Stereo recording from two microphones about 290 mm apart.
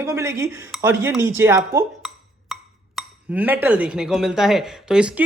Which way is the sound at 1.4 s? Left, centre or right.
Centre.